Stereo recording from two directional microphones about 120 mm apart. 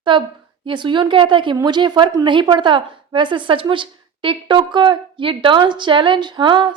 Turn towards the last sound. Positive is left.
turn(degrees=-40)  # may be behind; listen again after turning